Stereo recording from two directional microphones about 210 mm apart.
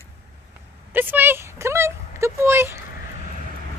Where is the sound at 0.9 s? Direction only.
10° right (ahead or behind).